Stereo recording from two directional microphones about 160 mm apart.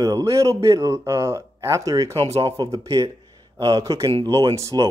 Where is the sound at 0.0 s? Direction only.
20° right (ahead or behind).